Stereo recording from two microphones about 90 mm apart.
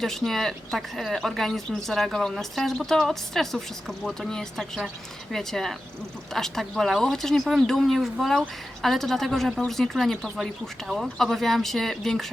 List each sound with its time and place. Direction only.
0.0 s speech: 5° left (ahead or behind)